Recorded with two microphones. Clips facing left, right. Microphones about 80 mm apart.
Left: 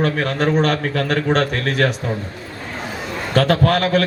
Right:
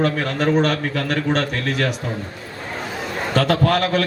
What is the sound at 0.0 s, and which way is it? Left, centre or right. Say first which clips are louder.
Speech: left 1 dB; left.